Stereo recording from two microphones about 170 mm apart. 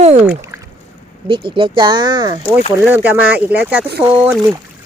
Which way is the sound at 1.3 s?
30° right (ahead or behind).